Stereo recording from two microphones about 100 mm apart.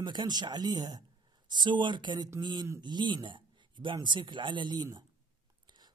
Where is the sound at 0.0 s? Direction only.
50° right (ahead or behind).